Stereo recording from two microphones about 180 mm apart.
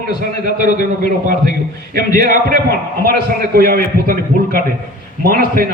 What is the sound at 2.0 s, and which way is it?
A man's voice, 55° right (ahead or behind).